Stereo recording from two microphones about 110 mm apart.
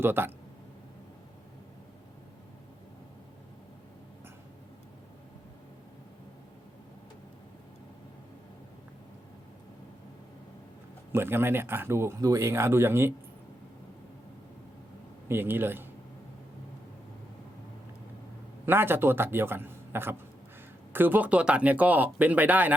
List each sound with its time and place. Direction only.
0.0 s speech: 20° right (ahead or behind)
11.1 s speech: 20° right (ahead or behind)
15.3 s speech: 20° right (ahead or behind)
18.6 s speech: 20° right (ahead or behind)